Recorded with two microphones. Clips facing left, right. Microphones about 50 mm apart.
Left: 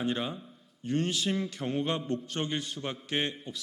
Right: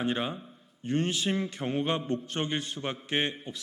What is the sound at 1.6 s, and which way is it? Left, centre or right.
Speech, right.